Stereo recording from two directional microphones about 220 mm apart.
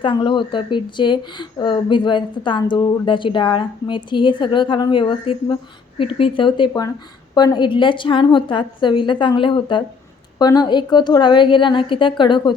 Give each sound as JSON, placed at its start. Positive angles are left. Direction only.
{"t": 0.0, "sound": "speech", "side_deg": 20}